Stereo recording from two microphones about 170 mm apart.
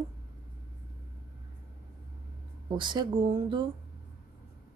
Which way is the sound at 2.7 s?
30° right (ahead or behind).